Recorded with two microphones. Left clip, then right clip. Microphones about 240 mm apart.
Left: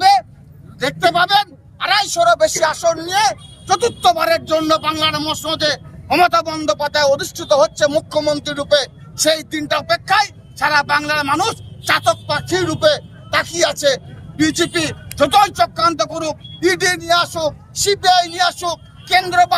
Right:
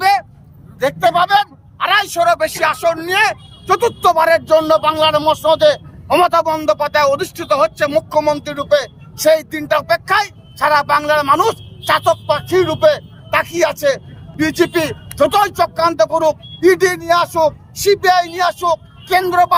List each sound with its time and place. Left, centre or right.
0.0 s a sound: centre
0.8 s a woman's voice: centre
2.6 s speech: right
3.8 s speech: centre
7.1 s speech: right
7.5 s speech: centre